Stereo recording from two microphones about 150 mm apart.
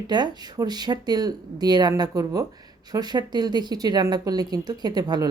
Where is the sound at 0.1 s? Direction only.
30° right (ahead or behind).